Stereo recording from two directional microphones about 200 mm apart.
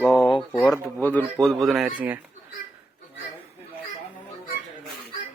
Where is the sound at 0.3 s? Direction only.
25° left (ahead or behind).